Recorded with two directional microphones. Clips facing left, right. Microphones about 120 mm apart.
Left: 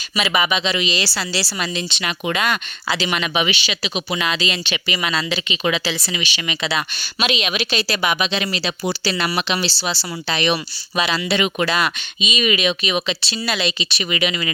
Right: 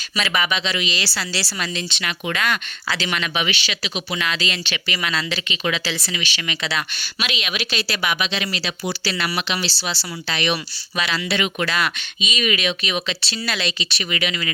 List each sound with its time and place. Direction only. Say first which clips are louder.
0.2 s speech: left 3 dB; 15° left (ahead or behind)